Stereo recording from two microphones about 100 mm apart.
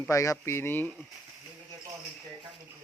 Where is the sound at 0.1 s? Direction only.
35° left (ahead or behind).